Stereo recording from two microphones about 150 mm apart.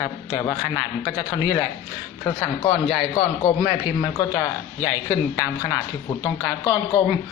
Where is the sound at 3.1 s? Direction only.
40° left (ahead or behind).